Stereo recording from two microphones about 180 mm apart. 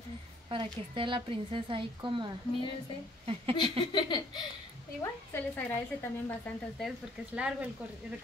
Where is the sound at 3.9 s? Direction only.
25° left (ahead or behind).